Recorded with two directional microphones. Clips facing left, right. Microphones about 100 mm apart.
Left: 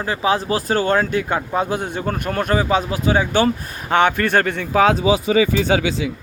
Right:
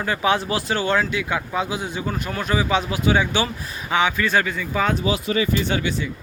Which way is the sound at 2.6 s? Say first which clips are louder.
Left 2 dB; 35° left (ahead or behind).